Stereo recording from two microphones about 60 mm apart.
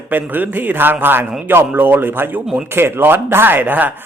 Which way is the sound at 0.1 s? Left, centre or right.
Right.